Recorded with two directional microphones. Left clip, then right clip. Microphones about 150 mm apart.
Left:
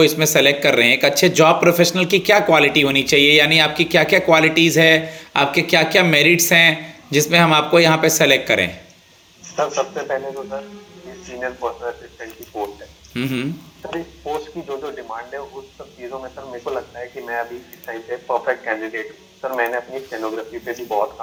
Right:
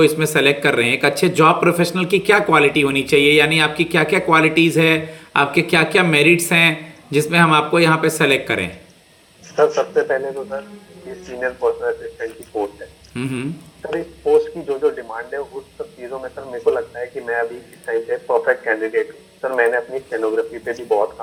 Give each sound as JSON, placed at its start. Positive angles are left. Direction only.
{"t": 0.0, "sound": "speech", "side_deg": -25}
{"t": 9.6, "sound": "speech", "side_deg": -40}
{"t": 14.3, "sound": "speech", "side_deg": -40}